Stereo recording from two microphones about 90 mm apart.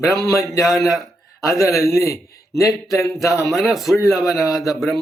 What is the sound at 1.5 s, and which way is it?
A man's voice, 35° left (ahead or behind).